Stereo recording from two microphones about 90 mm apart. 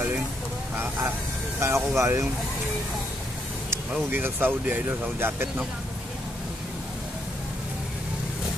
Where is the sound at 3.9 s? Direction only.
25° right (ahead or behind).